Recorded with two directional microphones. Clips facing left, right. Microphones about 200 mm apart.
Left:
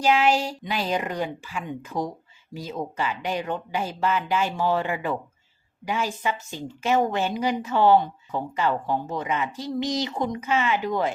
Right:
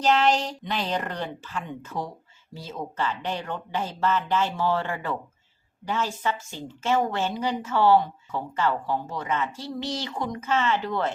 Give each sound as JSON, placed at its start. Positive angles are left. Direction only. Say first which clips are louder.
{"t": 0.0, "sound": "a woman's voice", "louder": "left 1 dB", "side_deg": 10}